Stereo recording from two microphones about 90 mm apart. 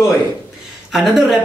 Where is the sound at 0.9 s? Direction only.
5° right (ahead or behind).